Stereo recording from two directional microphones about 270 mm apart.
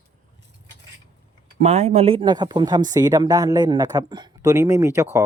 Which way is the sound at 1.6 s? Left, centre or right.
Right.